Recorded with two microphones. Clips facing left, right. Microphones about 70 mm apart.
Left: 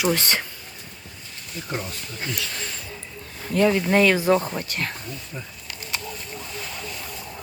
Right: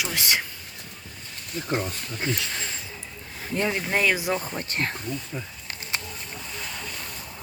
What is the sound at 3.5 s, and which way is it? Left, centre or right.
Speech, right.